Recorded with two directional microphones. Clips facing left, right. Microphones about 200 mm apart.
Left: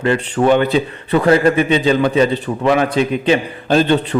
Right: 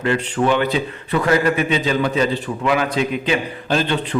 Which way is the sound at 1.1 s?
30° left (ahead or behind).